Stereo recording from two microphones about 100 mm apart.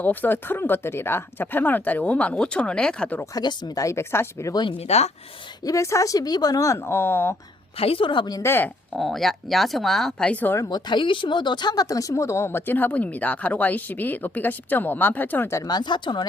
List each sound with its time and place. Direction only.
0.0 s speech: 20° left (ahead or behind)
3.3 s speech: 45° left (ahead or behind); by 4.5 s 25° left (ahead or behind)
4.8 s speech: 90° left
5.6 s speech: 30° left (ahead or behind)
7.8 s a woman's voice: 70° left (ahead or behind); by 8.4 s 50° left (ahead or behind)
8.4 s speech: 25° left (ahead or behind)
8.9 s speech: centre (ahead or behind); by 10.6 s 15° left (ahead or behind)
10.6 s speech: 40° left (ahead or behind); by 15.6 s 25° left (ahead or behind)
15.6 s speech: 45° left (ahead or behind)